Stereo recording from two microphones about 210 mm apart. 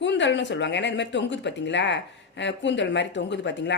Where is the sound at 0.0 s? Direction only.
55° left (ahead or behind).